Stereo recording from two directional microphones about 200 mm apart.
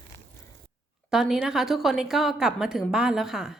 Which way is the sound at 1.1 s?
Centre (ahead or behind).